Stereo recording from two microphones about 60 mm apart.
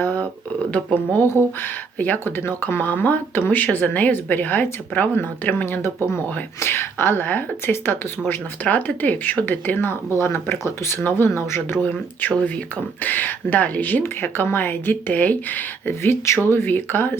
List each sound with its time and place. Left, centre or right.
1.1 s speech: left
8.6 s speech: left
12.2 s speech: left
14.0 s speech: left